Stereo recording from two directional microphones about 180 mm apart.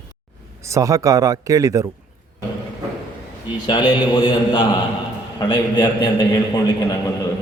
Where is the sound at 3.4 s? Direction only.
25° left (ahead or behind).